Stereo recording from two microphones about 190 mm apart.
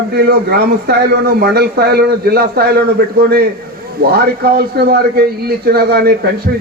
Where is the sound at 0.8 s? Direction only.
55° right (ahead or behind).